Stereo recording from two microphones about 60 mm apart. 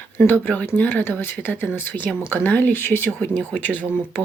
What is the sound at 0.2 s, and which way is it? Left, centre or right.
Speech, left.